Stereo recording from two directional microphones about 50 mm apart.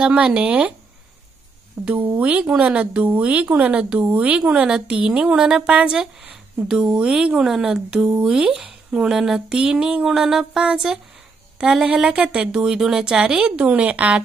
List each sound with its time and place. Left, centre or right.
0.0 s a woman's voice: right
2.0 s a woman's voice: right
4.4 s a woman's voice: centre